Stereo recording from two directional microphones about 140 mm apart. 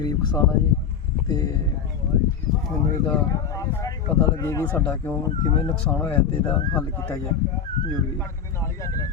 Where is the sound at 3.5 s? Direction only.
25° left (ahead or behind).